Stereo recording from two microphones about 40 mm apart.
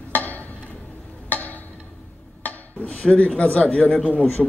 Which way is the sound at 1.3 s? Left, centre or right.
Left.